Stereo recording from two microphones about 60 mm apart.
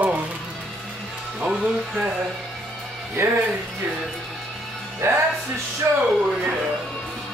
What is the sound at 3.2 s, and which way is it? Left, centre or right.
Speech, right.